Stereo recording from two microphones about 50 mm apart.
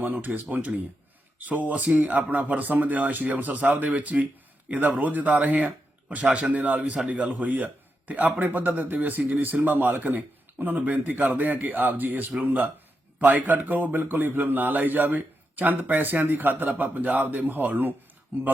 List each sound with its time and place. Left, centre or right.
0.0 s a man's voice: right